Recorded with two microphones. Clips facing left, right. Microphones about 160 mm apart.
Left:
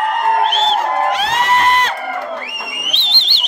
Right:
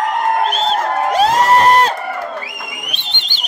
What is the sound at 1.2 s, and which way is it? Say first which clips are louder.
Crowd: right 5 dB; 40° right (ahead or behind).